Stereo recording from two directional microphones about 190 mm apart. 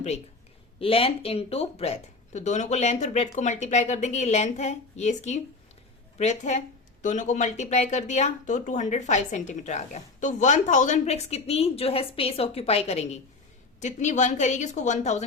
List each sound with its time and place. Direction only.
0.8 s speech: 30° left (ahead or behind)